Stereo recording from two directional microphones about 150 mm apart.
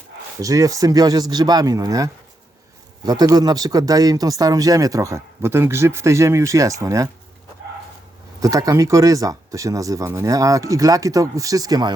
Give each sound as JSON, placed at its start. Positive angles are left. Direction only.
{"t": 0.3, "sound": "speech", "side_deg": -20}
{"t": 8.4, "sound": "speech", "side_deg": -25}